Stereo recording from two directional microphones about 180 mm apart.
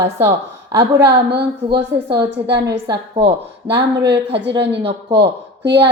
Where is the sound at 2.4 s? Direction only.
70° right (ahead or behind).